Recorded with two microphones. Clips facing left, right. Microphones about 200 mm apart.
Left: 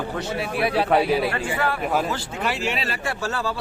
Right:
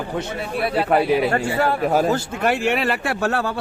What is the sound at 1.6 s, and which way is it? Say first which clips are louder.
Speech: right 5 dB; 35° right (ahead or behind).